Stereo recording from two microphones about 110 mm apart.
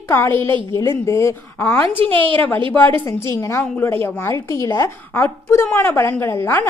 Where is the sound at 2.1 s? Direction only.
50° right (ahead or behind).